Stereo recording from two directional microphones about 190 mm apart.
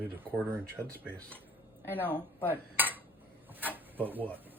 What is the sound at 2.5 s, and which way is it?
Dishes, 10° right (ahead or behind).